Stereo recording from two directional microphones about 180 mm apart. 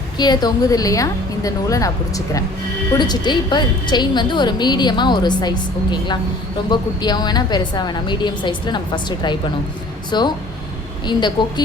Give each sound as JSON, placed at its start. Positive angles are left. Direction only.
{"t": 0.2, "sound": "a woman's voice", "side_deg": 20}